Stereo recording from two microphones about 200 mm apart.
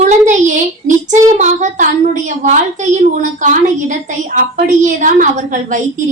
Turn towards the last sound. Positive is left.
turn(degrees=-40)  # may be behind; listen again after turning